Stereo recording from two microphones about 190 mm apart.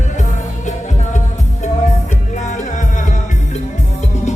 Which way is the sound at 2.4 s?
40° left (ahead or behind).